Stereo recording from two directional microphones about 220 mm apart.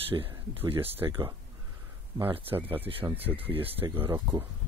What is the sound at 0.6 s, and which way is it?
Speech, 10° right (ahead or behind).